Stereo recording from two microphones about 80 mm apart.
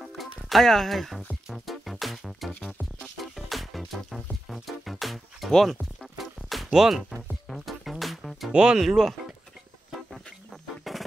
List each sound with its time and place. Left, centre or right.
0.0 s music: centre
10.8 s music: centre